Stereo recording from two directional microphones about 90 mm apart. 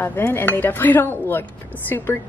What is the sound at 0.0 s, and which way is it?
A woman's voice, 25° left (ahead or behind).